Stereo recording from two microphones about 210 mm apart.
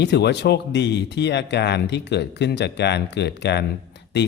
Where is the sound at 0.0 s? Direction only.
55° left (ahead or behind).